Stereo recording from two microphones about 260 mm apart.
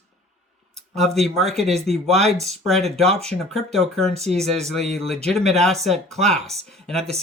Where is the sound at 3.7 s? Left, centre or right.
Centre.